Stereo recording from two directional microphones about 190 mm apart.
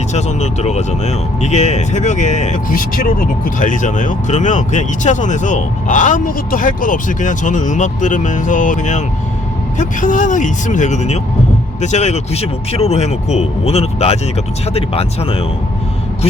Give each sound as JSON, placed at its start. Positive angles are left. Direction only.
{"t": 0.1, "sound": "speech", "side_deg": 35}